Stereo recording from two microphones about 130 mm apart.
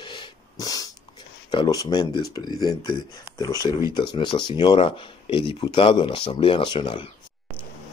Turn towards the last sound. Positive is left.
turn(degrees=35)  # may be behind; listen again after turning